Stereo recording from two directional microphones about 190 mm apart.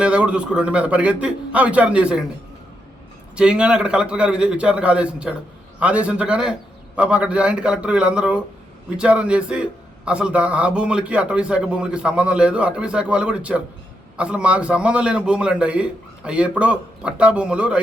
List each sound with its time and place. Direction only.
0.0 s a man's voice: 5° right (ahead or behind)
3.3 s a man's voice: 5° right (ahead or behind)